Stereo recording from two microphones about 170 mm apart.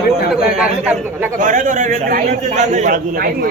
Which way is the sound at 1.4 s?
50° right (ahead or behind).